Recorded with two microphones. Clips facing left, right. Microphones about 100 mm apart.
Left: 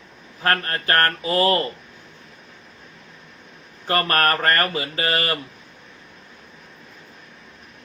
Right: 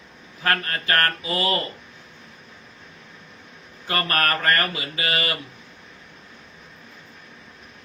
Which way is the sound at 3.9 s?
40° left (ahead or behind).